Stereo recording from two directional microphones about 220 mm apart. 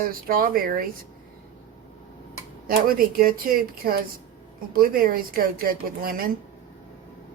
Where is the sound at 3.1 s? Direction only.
40° right (ahead or behind).